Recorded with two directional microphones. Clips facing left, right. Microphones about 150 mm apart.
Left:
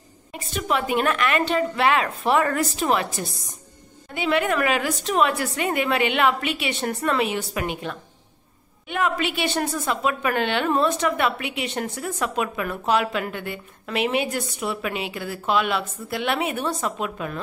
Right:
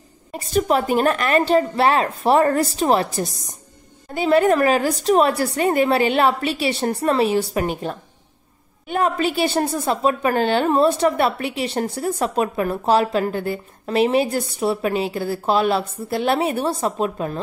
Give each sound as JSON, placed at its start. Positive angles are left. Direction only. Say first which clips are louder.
{"t": 0.3, "sound": "a woman's voice", "louder": "right 7 dB", "side_deg": -40}